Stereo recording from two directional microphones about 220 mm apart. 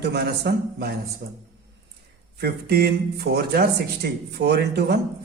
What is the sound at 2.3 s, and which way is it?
Speech, 45° right (ahead or behind).